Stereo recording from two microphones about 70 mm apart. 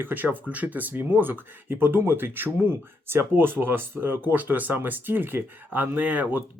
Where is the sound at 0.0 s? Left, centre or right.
Right.